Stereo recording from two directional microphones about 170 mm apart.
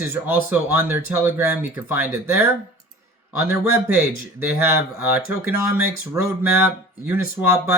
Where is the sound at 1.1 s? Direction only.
10° right (ahead or behind).